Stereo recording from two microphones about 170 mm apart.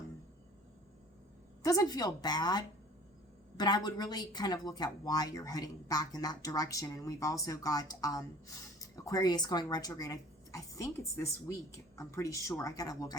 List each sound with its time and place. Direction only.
1.6 s a woman's voice: 20° left (ahead or behind)